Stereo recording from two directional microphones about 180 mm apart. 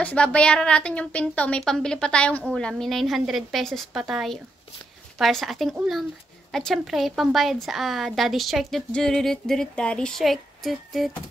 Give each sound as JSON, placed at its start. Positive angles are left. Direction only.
{"t": 0.0, "sound": "a woman's voice", "side_deg": 5}